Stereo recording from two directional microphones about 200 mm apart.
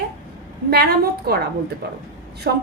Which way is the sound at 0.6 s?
50° right (ahead or behind).